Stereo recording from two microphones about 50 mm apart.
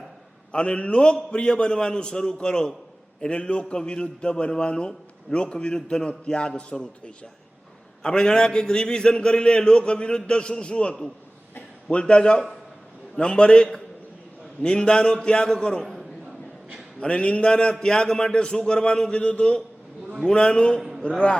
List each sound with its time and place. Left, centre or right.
0.5 s a man's voice: centre
8.0 s a man's voice: centre
17.0 s a man's voice: left